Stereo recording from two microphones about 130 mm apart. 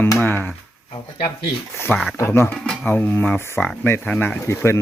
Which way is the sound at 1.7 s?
20° left (ahead or behind).